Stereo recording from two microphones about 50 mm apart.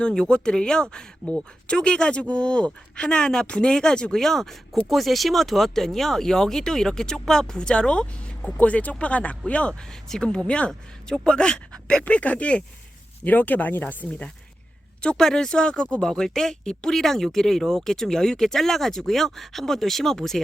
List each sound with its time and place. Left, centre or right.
0.3 s speech: centre
9.9 s speech: centre
10.7 s speech: centre; by 14.3 s left
15.1 s speech: centre